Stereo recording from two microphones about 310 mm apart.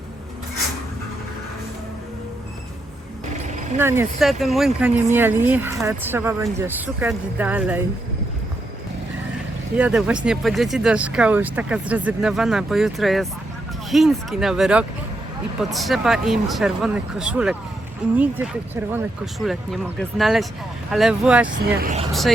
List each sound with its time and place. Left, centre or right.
3.8 s speech: centre
9.7 s speech: centre
21.4 s speech: right